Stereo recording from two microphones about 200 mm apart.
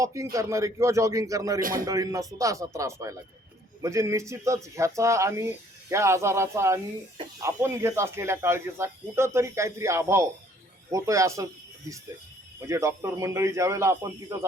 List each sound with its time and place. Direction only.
0.0 s speech: 15° right (ahead or behind)
12.5 s speech: 15° right (ahead or behind)